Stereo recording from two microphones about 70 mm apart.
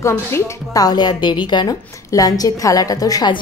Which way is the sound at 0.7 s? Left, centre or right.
Left.